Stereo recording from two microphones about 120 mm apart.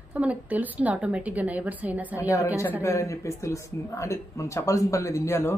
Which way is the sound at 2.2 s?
25° left (ahead or behind).